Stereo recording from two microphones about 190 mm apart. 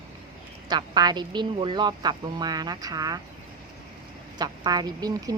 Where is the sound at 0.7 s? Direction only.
20° right (ahead or behind).